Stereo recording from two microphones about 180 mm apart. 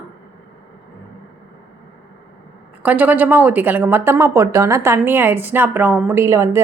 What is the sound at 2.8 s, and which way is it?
A woman's voice, 10° right (ahead or behind).